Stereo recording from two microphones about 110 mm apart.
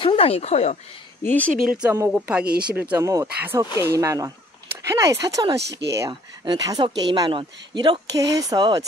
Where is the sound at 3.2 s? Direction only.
15° right (ahead or behind).